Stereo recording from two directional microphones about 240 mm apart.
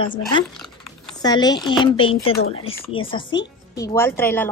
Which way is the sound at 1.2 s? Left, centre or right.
Centre.